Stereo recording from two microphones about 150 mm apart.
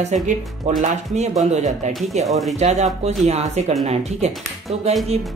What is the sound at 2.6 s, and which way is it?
Speech, 50° right (ahead or behind).